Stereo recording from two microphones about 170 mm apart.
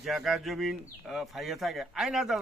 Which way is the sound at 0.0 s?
Centre (ahead or behind).